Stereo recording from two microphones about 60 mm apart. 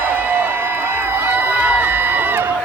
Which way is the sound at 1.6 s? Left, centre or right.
Right.